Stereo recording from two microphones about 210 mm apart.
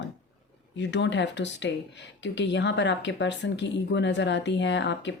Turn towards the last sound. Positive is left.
turn(degrees=55)  # may be behind; listen again after turning